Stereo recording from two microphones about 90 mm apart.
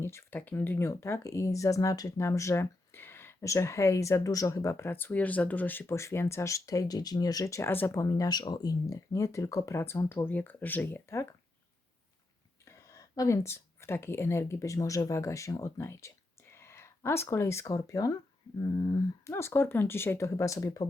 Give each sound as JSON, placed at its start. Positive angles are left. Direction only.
{"t": 0.0, "sound": "speech", "side_deg": 30}
{"t": 12.6, "sound": "speech", "side_deg": 35}
{"t": 19.2, "sound": "speech", "side_deg": 30}